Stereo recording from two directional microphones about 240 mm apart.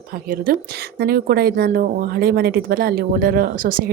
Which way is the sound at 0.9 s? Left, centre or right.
Right.